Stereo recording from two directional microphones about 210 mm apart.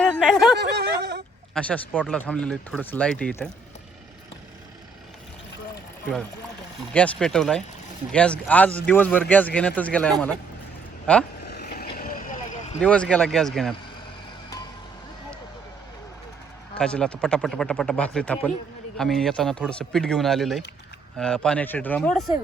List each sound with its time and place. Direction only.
0.1 s a sound: centre (ahead or behind)
0.6 s a sound: 55° right (ahead or behind)
1.5 s speech: 5° left (ahead or behind)
6.9 s speech: 5° left (ahead or behind)
11.4 s vehicle: 50° left (ahead or behind)
12.8 s speech: 5° left (ahead or behind)
16.7 s speech: 5° left (ahead or behind)